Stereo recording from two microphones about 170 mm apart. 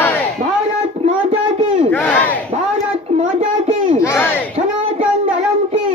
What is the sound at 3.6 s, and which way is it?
Crowd, 50° right (ahead or behind).